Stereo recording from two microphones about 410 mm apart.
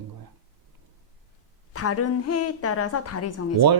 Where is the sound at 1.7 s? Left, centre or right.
Left.